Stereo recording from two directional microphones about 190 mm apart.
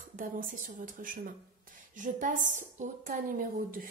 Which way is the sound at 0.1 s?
45° right (ahead or behind).